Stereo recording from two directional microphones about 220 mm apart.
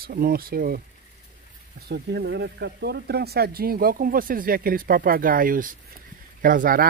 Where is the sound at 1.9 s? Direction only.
50° right (ahead or behind).